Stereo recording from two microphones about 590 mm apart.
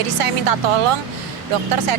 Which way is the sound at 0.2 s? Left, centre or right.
Right.